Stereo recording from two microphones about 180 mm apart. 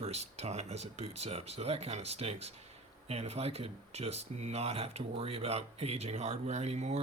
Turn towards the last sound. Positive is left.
turn(degrees=-40)  # may be behind; listen again after turning